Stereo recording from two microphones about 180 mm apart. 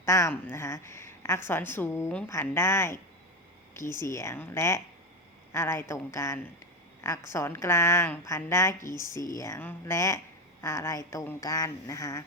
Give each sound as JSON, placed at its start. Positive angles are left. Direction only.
{"t": 0.0, "sound": "a woman's voice", "side_deg": 15}